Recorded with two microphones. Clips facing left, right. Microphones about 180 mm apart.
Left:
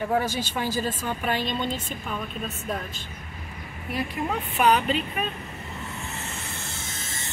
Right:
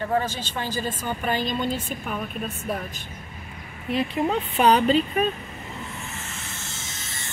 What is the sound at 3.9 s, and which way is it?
Speech, 25° right (ahead or behind).